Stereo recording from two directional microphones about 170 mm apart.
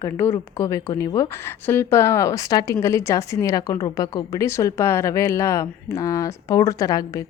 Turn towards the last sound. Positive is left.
turn(degrees=20)  # may be behind; listen again after turning